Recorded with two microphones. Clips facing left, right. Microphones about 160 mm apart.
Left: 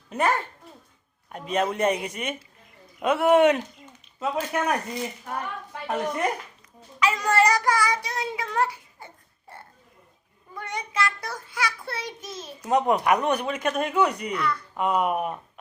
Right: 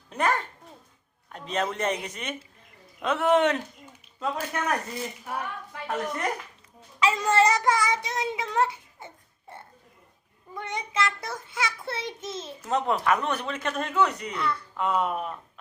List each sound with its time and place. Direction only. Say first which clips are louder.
0.1 s a child's voice: left 2 dB; 5° left (ahead or behind)
7.0 s child singing: even; 25° right (ahead or behind)
12.6 s speech: left 4 dB; 15° left (ahead or behind)
14.3 s speech: left 2 dB; 25° right (ahead or behind)
14.8 s speech: left 3 dB; 10° left (ahead or behind)